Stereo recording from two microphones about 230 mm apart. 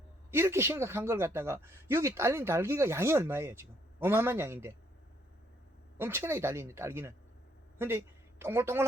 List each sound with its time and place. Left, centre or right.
0.3 s speech: centre
6.0 s speech: centre